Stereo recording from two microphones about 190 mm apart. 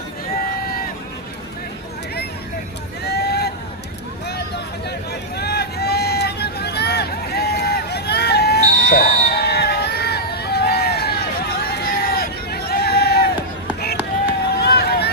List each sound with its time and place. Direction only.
3.0 s vehicle: 60° left (ahead or behind)
5.4 s hubbub: 60° left (ahead or behind)
14.5 s run: 60° left (ahead or behind)